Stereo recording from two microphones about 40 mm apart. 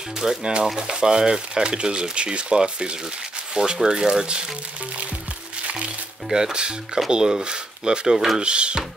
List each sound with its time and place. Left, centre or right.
0.2 s speech: centre
6.3 s speech: centre